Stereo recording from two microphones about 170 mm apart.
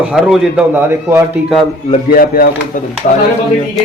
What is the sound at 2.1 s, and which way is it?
Speech, 60° left (ahead or behind).